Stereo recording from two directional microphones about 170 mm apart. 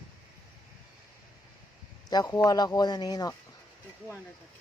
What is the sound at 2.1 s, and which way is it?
Speech, 25° left (ahead or behind).